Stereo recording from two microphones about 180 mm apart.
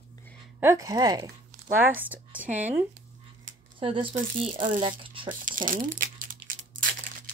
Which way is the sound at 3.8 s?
30° right (ahead or behind).